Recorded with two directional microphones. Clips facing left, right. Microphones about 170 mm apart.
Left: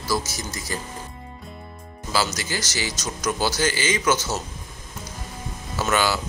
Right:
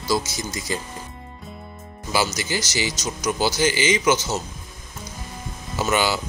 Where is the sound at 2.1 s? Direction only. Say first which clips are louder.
Right 2 dB; 15° right (ahead or behind).